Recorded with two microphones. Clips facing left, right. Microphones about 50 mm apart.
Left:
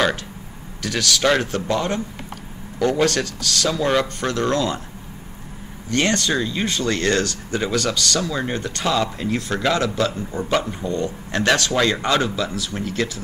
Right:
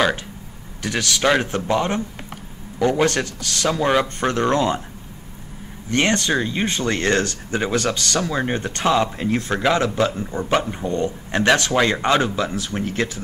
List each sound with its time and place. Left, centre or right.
0.8 s speech: right
5.9 s speech: right
9.6 s speech: centre